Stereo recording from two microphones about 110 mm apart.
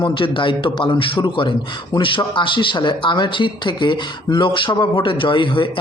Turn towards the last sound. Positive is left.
turn(degrees=50)  # may be behind; listen again after turning